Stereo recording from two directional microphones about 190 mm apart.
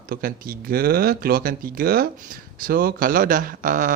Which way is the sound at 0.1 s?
50° right (ahead or behind).